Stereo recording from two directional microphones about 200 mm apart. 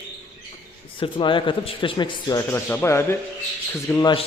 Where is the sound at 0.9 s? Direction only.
25° left (ahead or behind).